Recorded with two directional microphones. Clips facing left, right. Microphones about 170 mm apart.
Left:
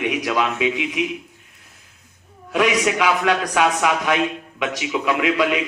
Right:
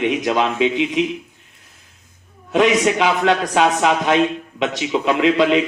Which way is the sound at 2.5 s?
25° right (ahead or behind).